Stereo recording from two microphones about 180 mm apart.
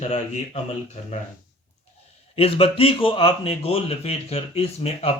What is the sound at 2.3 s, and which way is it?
A man's voice, 30° left (ahead or behind).